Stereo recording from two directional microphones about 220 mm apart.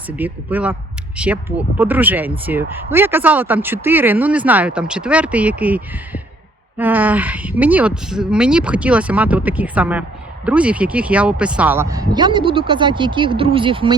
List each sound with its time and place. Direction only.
0.1 s speech: 5° right (ahead or behind); by 13.9 s 25° right (ahead or behind)